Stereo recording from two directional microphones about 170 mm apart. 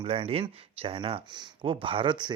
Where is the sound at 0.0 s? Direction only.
35° right (ahead or behind).